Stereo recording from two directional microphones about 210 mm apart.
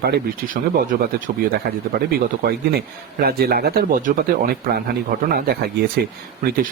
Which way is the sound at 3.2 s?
45° right (ahead or behind).